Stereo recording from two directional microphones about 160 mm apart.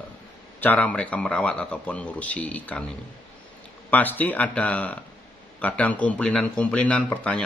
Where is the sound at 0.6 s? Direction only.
10° left (ahead or behind).